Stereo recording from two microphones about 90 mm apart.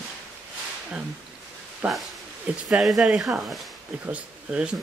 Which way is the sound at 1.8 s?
20° right (ahead or behind).